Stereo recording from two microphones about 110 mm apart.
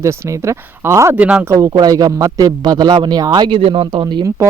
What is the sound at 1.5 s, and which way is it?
A man's voice, 30° right (ahead or behind).